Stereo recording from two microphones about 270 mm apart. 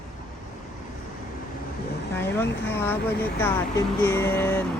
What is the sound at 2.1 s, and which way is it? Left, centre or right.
Speech, centre.